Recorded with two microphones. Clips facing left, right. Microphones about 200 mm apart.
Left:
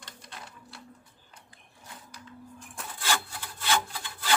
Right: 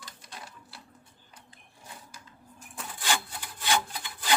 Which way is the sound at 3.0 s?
15° right (ahead or behind).